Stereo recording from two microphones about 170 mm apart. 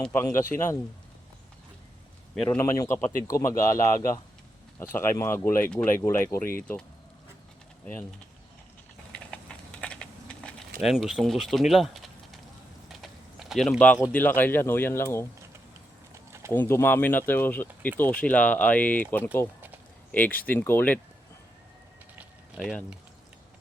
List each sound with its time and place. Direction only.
0.0 s speech: 15° left (ahead or behind)
2.3 s a man's voice: 5° left (ahead or behind)
2.6 s speech: 15° left (ahead or behind)
9.1 s typing: 5° left (ahead or behind)
10.8 s speech: centre (ahead or behind)
12.9 s a sound: centre (ahead or behind)
14.0 s speech: 10° left (ahead or behind)
16.1 s a sound: 15° right (ahead or behind)
16.5 s speech: 15° left (ahead or behind)
22.1 s a sound: 5° right (ahead or behind)